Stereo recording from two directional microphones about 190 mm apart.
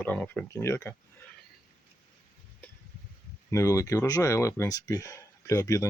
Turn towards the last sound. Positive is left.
turn(degrees=15)  # may be behind; listen again after turning